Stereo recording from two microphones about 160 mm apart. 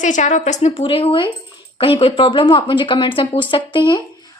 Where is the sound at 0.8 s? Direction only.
35° left (ahead or behind).